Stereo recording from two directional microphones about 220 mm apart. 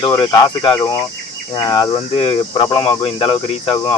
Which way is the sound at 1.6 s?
20° left (ahead or behind).